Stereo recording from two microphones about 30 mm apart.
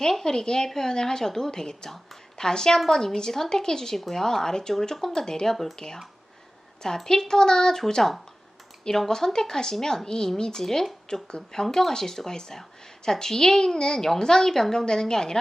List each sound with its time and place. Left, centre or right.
0.0 s a woman's voice: centre
8.9 s a woman's voice: centre